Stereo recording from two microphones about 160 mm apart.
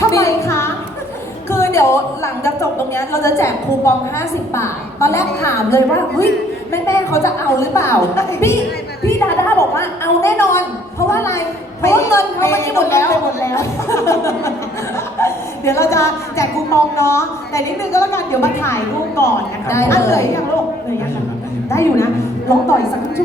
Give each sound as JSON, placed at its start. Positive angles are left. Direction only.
{"t": 0.0, "sound": "a sound", "side_deg": 20}
{"t": 1.5, "sound": "a woman's voice", "side_deg": 15}
{"t": 21.7, "sound": "a woman's voice", "side_deg": 15}